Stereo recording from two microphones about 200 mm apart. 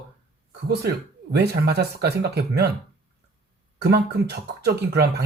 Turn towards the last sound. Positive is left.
turn(degrees=-55)  # may be behind; listen again after turning